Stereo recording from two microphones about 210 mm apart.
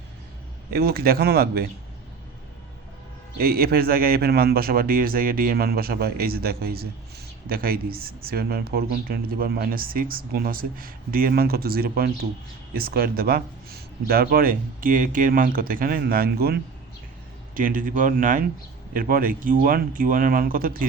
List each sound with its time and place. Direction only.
0.7 s speech: 45° right (ahead or behind)
3.3 s speech: 45° right (ahead or behind)